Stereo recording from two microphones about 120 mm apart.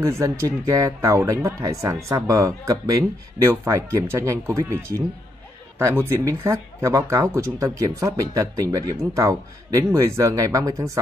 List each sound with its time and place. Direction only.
0.0 s speech: 25° right (ahead or behind)